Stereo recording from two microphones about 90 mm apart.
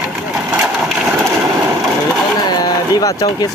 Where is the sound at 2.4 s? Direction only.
45° left (ahead or behind).